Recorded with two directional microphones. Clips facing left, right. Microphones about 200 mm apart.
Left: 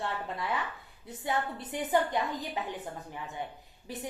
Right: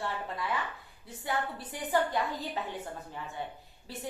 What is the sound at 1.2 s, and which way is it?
A woman's voice, 20° left (ahead or behind).